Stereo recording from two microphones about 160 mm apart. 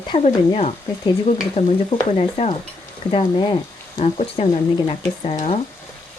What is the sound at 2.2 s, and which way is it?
Speech, 40° left (ahead or behind).